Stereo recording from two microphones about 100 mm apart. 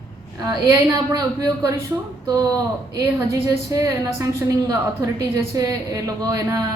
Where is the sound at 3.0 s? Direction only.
35° right (ahead or behind).